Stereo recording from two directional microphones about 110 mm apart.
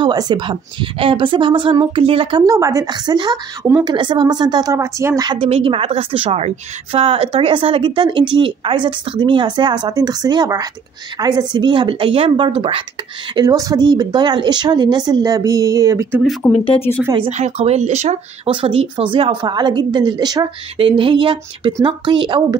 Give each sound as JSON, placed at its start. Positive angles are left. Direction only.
{"t": 0.0, "sound": "speech", "side_deg": -40}
{"t": 2.4, "sound": "speech", "side_deg": -30}
{"t": 5.4, "sound": "a woman's voice", "side_deg": -55}
{"t": 13.3, "sound": "speech", "side_deg": -35}
{"t": 17.3, "sound": "speech", "side_deg": -80}
{"t": 18.5, "sound": "a woman's voice", "side_deg": -55}
{"t": 19.4, "sound": "speech", "side_deg": -40}
{"t": 20.7, "sound": "speech", "side_deg": -55}